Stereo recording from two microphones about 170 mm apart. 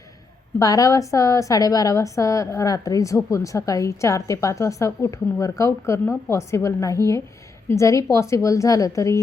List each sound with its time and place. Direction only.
0.6 s a woman's voice: 20° left (ahead or behind)